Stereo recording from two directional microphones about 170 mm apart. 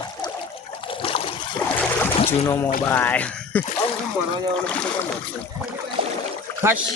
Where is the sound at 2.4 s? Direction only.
15° left (ahead or behind).